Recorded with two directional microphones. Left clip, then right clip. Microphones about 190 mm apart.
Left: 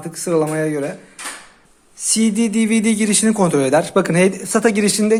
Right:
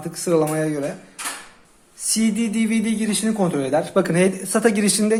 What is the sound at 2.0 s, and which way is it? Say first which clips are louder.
A man's voice: left 4 dB; 20° left (ahead or behind).